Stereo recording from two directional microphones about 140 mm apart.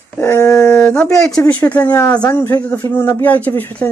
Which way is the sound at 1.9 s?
20° left (ahead or behind).